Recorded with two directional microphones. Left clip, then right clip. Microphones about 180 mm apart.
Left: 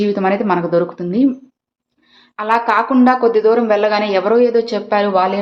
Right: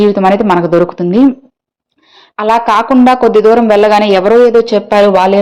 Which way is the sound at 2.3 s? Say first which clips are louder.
Right 5 dB; 35° right (ahead or behind).